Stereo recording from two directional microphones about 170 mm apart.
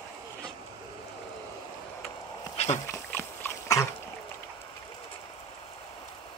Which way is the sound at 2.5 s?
40° left (ahead or behind).